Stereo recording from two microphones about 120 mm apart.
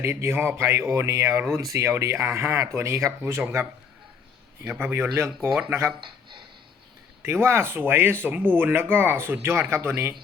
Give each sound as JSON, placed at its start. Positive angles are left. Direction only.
{"t": 0.0, "sound": "a man's voice", "side_deg": -20}
{"t": 7.4, "sound": "speech", "side_deg": -20}